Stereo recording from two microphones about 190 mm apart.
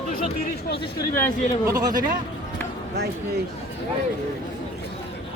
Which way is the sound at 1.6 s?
15° right (ahead or behind).